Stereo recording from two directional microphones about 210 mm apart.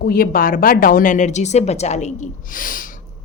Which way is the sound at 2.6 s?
40° left (ahead or behind).